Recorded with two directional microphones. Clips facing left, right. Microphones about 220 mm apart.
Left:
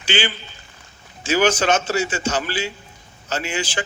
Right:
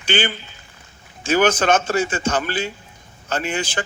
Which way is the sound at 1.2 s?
55° right (ahead or behind).